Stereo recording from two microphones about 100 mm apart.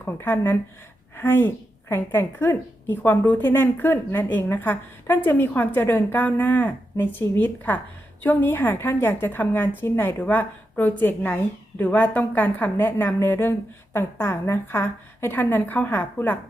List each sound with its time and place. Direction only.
0.0 s a woman's voice: 20° left (ahead or behind)